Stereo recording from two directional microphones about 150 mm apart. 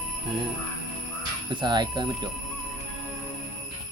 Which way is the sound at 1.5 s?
30° right (ahead or behind).